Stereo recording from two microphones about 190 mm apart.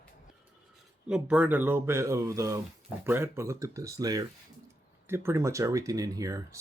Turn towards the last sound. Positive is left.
turn(degrees=-15)  # may be behind; listen again after turning